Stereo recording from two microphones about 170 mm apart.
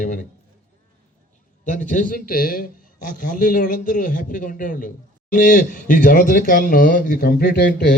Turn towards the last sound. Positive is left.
turn(degrees=65)  # may be behind; listen again after turning